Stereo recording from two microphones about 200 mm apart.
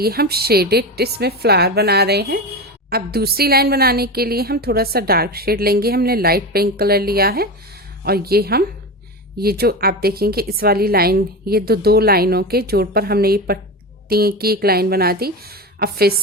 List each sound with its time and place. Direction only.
0.0 s a woman's voice: 50° right (ahead or behind)